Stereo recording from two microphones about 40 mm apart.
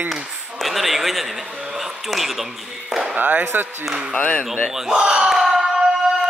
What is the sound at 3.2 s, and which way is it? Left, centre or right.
Speech, right.